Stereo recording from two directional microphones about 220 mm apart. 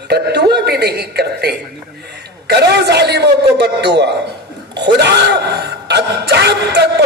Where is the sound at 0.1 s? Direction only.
50° right (ahead or behind).